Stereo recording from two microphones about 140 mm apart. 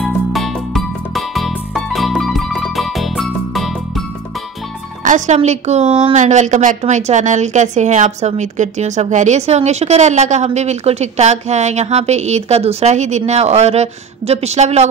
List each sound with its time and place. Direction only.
0.0 s music: centre (ahead or behind)
5.0 s a woman's voice: 60° right (ahead or behind)